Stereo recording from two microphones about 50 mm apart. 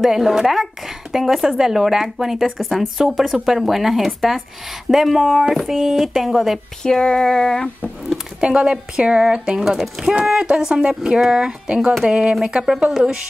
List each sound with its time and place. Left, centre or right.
0.0 s a woman's voice: centre
6.8 s female singing: centre
8.4 s a woman's voice: centre
11.0 s a woman's voice: centre